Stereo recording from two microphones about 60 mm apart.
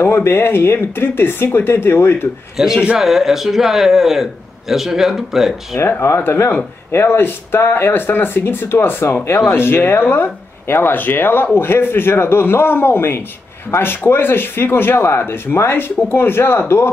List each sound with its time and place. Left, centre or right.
0.0 s speech: left
2.5 s a man's voice: centre
5.8 s speech: left